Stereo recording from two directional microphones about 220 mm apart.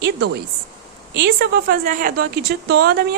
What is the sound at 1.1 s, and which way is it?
Speech, 45° right (ahead or behind).